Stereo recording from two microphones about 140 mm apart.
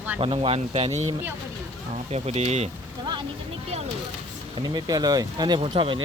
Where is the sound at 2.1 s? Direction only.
50° right (ahead or behind).